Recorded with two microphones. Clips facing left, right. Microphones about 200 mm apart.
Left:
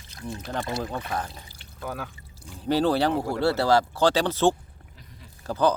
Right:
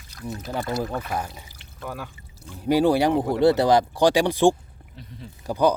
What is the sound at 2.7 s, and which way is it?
Speech, 10° right (ahead or behind).